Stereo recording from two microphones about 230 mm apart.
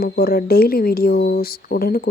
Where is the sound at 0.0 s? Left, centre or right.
Left.